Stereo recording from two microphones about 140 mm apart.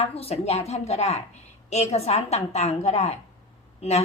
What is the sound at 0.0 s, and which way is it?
A woman's voice, 45° left (ahead or behind).